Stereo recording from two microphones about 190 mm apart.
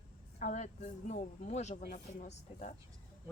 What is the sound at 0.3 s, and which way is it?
Speech, 40° left (ahead or behind).